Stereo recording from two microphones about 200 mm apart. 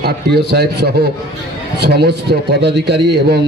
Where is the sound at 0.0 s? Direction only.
55° right (ahead or behind).